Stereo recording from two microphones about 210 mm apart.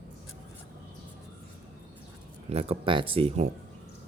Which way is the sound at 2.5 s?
30° right (ahead or behind).